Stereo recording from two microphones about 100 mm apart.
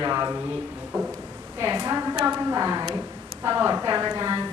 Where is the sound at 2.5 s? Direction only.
30° right (ahead or behind).